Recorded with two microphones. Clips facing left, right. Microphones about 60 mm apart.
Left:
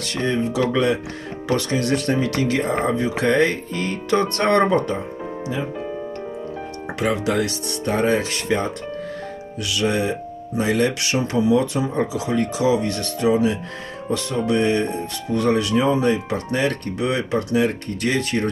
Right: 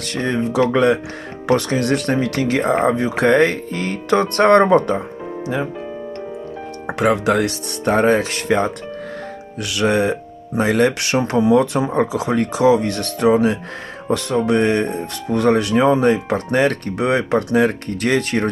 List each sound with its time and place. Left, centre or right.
0.2 s speech: right
0.5 s speech: right
7.0 s speech: right
9.6 s speech: right